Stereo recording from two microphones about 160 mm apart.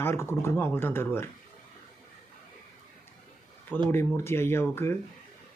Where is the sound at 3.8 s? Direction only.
15° left (ahead or behind).